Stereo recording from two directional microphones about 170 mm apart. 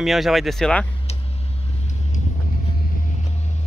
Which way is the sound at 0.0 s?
Centre (ahead or behind).